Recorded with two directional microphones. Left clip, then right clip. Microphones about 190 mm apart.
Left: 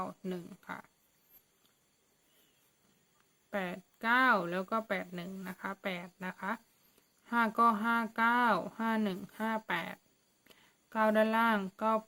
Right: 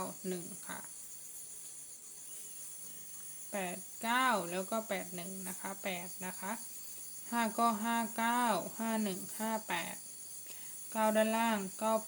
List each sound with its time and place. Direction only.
0.0 s cricket: 15° left (ahead or behind)
3.5 s speech: 25° left (ahead or behind)